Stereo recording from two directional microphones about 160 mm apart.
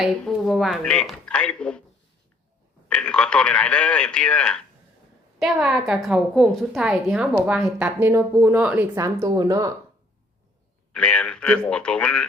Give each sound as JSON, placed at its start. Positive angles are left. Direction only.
{"t": 0.0, "sound": "a woman's voice", "side_deg": 0}
{"t": 2.9, "sound": "a man's voice", "side_deg": 5}
{"t": 9.0, "sound": "speech", "side_deg": -20}
{"t": 10.9, "sound": "a man's voice", "side_deg": 5}